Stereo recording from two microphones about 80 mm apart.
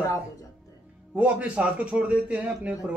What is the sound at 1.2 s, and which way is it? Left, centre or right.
A man's voice, centre.